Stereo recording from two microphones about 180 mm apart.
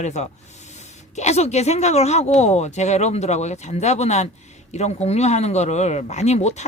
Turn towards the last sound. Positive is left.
turn(degrees=40)  # may be behind; listen again after turning